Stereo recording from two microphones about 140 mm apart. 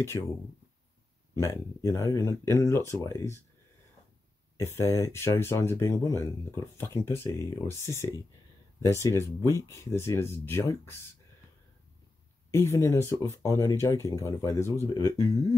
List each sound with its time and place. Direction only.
1.4 s speech: 20° left (ahead or behind)
4.7 s speech: 20° left (ahead or behind)
12.4 s speech: 20° left (ahead or behind)